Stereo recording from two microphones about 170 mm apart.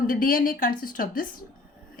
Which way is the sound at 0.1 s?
55° left (ahead or behind).